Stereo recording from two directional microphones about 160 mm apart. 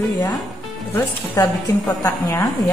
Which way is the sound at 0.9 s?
15° left (ahead or behind).